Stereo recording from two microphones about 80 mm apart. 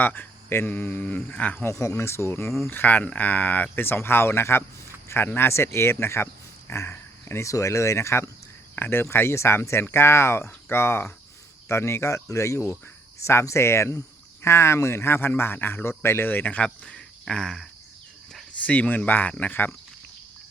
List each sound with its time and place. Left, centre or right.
0.0 s speech: left
1.5 s speech: left
2.6 s speech: left; by 17.7 s centre
18.5 s speech: centre